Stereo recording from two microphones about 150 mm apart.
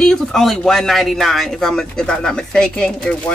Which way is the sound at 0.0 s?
5° left (ahead or behind).